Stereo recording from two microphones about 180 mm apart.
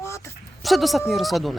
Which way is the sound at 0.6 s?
Centre (ahead or behind).